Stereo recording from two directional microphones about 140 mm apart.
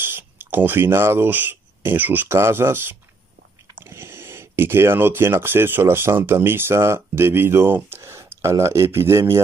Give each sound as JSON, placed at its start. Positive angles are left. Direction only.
{"t": 0.0, "sound": "speech", "side_deg": -15}